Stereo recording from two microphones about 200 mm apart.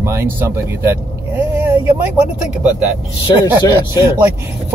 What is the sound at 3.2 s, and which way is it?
Speech, 20° left (ahead or behind).